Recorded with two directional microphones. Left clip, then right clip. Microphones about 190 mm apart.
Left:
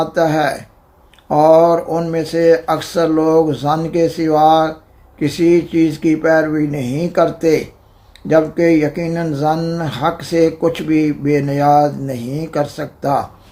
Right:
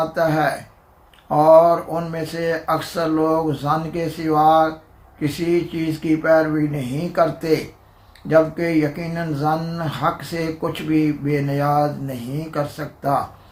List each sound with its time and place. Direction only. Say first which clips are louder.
0.1 s speech: left 4 dB; 50° left (ahead or behind)